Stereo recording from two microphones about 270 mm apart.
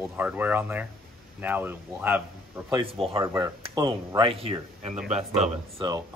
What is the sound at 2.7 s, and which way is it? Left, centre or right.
Speech, centre.